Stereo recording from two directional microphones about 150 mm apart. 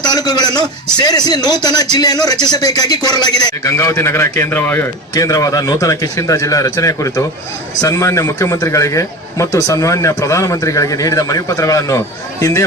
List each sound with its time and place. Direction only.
0.0 s a man's voice: 25° left (ahead or behind)
5.1 s a man's voice: 25° left (ahead or behind)